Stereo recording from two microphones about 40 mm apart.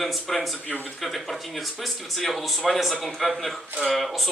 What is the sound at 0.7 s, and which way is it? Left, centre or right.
Speech, left.